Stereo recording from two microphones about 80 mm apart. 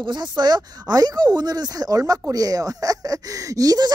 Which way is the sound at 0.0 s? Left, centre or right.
Right.